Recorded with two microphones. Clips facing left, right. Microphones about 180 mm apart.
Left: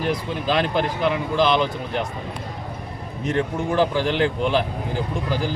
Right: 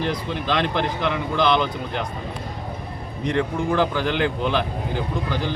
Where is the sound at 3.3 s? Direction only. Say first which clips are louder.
Even; 30° left (ahead or behind).